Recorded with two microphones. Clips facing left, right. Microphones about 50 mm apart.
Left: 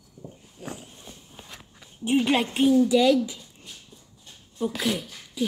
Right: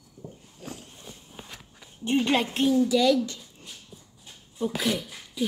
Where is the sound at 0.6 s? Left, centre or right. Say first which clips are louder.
Left 3 dB; centre.